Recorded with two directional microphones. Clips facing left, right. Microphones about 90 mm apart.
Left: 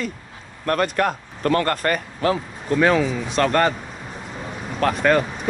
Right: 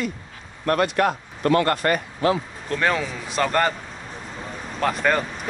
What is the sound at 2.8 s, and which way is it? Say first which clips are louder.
Speech: left 5 dB; centre (ahead or behind).